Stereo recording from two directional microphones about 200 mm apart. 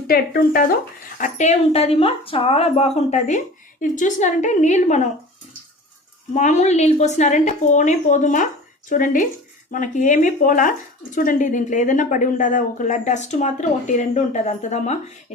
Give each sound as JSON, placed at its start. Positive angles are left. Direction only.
{"t": 0.1, "sound": "speech", "side_deg": 45}
{"t": 1.2, "sound": "speech", "side_deg": 35}
{"t": 6.3, "sound": "speech", "side_deg": 35}